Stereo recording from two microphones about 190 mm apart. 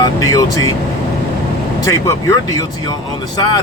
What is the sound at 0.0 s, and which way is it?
Speech, 20° left (ahead or behind).